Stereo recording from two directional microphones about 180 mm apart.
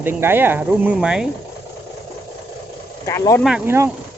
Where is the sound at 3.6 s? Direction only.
15° right (ahead or behind).